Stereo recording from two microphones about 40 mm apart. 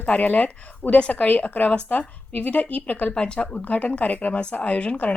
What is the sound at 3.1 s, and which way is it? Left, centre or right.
Speech, left.